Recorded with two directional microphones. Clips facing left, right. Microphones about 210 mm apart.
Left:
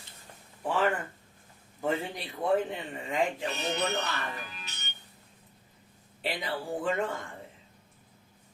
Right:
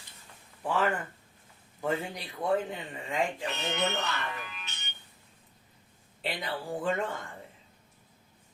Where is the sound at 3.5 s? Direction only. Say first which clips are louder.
Even; 35° left (ahead or behind).